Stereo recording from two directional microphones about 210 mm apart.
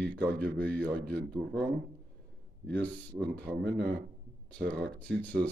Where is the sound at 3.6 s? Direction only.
50° right (ahead or behind).